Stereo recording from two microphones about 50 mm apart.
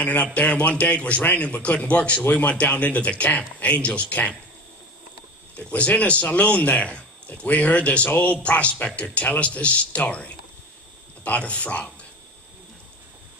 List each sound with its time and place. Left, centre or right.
0.0 s a man's voice: left
5.6 s a man's voice: left